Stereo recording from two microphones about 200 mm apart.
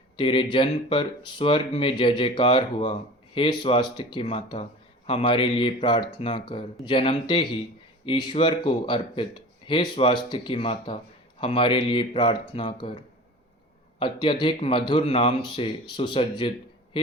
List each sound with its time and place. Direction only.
0.2 s speech: 25° left (ahead or behind)
14.0 s speech: 25° left (ahead or behind)